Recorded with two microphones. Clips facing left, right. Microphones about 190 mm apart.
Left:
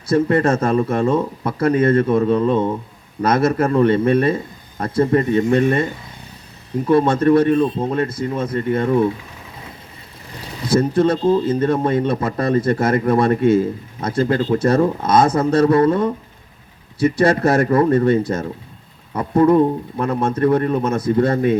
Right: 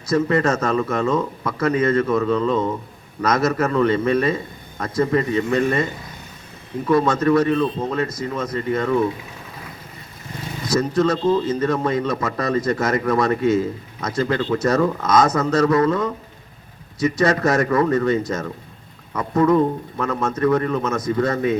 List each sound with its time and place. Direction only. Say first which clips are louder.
0.3 s speech: left 3 dB; 30° left (ahead or behind)
5.4 s speech: left 4 dB; 30° left (ahead or behind)
6.8 s speech: left 3 dB; 30° left (ahead or behind)
10.7 s speech: left 3 dB; 30° left (ahead or behind)